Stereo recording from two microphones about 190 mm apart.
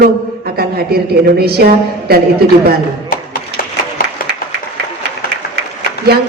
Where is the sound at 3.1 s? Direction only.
50° left (ahead or behind).